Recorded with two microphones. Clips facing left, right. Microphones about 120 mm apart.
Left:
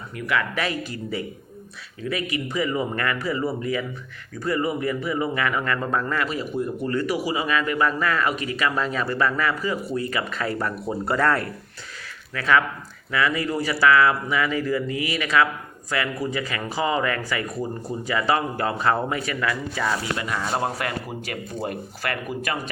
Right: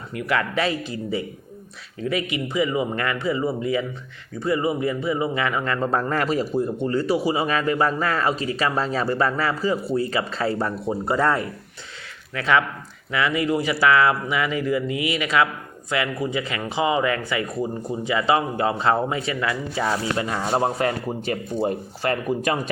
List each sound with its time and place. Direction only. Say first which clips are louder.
0.3 s speech: right 2 dB; 30° right (ahead or behind)